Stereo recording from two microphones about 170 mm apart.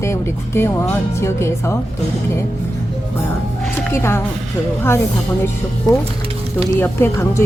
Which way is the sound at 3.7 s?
15° left (ahead or behind).